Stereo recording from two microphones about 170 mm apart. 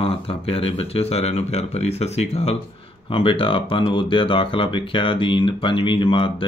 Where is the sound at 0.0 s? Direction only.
35° left (ahead or behind).